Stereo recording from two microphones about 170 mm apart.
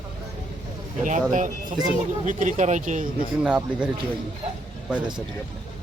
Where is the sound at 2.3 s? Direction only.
50° right (ahead or behind).